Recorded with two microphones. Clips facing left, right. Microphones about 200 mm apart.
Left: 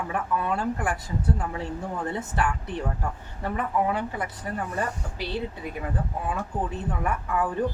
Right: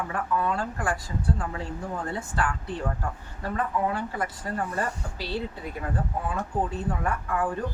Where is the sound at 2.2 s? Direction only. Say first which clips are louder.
Left 2 dB; 20° left (ahead or behind).